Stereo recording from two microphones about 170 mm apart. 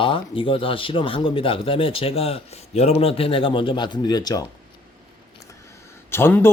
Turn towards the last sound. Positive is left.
turn(degrees=15)  # may be behind; listen again after turning